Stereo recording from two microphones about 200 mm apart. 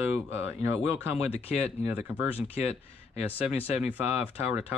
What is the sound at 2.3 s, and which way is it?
Speech, 30° left (ahead or behind).